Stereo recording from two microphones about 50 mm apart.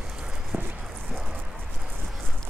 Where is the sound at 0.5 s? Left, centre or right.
Right.